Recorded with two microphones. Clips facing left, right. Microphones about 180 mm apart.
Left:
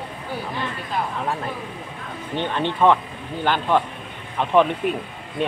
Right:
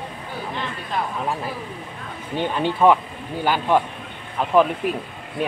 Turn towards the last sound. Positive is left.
turn(degrees=-5)  # may be behind; listen again after turning